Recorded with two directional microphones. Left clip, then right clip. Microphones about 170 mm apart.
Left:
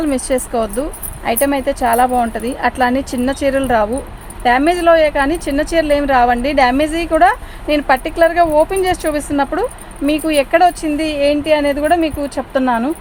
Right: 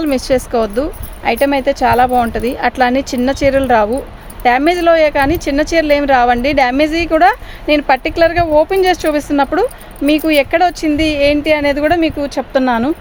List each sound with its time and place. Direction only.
0.0 s a woman's voice: 50° right (ahead or behind)